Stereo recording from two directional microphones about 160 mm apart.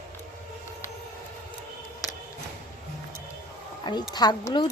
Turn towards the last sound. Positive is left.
turn(degrees=25)  # may be behind; listen again after turning